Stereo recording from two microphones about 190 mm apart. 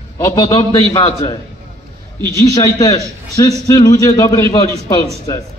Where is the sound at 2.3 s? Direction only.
15° left (ahead or behind).